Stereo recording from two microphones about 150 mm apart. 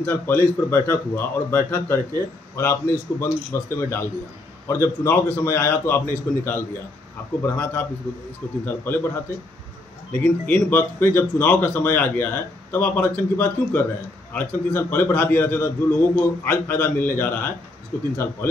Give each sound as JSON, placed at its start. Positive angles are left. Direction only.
{"t": 0.0, "sound": "a man's voice", "side_deg": 15}
{"t": 10.1, "sound": "a man's voice", "side_deg": 10}